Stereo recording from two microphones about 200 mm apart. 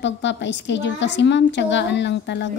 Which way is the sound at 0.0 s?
65° left (ahead or behind).